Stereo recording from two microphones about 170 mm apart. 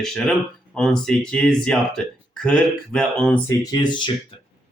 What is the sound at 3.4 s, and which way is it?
Speech, 25° left (ahead or behind).